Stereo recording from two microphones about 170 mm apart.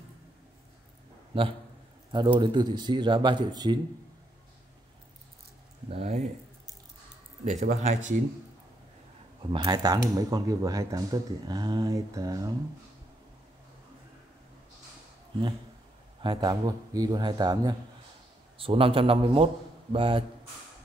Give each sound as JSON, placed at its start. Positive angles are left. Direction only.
{"t": 1.3, "sound": "a man's voice", "side_deg": -30}
{"t": 5.9, "sound": "a man's voice", "side_deg": -40}
{"t": 7.4, "sound": "speech", "side_deg": -45}
{"t": 9.5, "sound": "speech", "side_deg": -25}
{"t": 16.2, "sound": "a man's voice", "side_deg": -25}